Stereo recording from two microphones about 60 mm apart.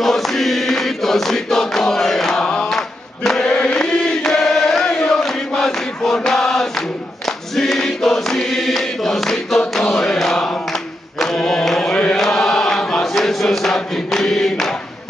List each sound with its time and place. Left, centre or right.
0.0 s chant: centre
7.2 s choir: centre
10.7 s singing: centre
11.9 s mantra: centre
12.2 s chant: centre